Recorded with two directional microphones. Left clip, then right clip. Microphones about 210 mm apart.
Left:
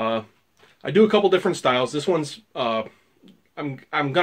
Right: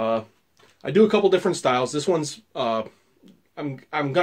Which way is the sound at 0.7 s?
Centre (ahead or behind).